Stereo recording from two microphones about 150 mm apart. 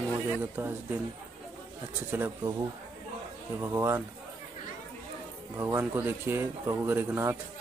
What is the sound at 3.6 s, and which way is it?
Speech, 15° right (ahead or behind).